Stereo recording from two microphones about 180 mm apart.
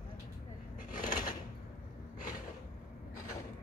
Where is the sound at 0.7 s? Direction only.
50° left (ahead or behind).